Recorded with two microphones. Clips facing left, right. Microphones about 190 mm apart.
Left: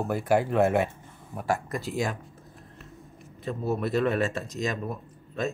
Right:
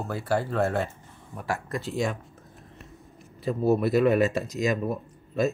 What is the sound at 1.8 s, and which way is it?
Speech, centre (ahead or behind).